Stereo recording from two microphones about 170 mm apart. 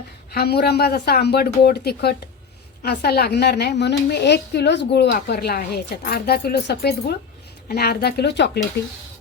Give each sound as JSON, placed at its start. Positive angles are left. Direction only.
{"t": 0.3, "sound": "a woman's voice", "side_deg": 70}